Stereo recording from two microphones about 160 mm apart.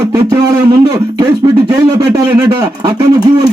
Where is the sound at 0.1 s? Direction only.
20° right (ahead or behind).